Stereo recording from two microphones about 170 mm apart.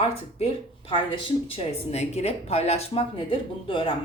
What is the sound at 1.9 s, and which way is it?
Speech, 40° left (ahead or behind).